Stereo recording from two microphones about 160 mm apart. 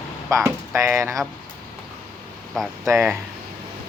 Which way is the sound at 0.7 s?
15° right (ahead or behind).